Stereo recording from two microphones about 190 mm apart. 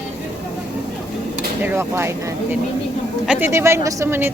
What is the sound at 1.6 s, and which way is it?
Speech, 15° right (ahead or behind).